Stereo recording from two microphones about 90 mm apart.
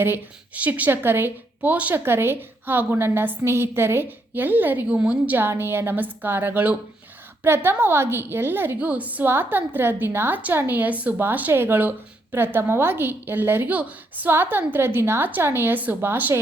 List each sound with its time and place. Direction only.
0.0 s a woman's voice: 20° right (ahead or behind)